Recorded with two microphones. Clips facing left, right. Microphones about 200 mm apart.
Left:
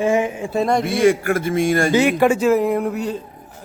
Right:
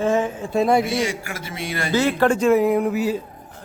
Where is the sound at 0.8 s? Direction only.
55° left (ahead or behind).